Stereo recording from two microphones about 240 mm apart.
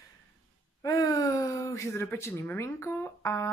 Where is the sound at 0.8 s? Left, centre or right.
Centre.